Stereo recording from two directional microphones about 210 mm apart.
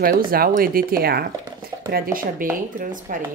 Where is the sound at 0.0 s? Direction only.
45° right (ahead or behind).